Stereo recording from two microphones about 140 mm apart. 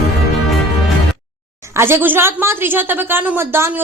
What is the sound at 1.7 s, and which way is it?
A woman's voice, 15° right (ahead or behind).